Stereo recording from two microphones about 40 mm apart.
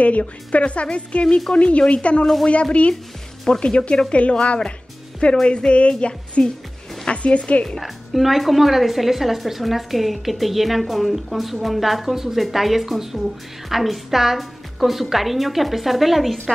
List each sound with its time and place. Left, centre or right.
0.0 s a woman's voice: left
7.8 s a woman's voice: centre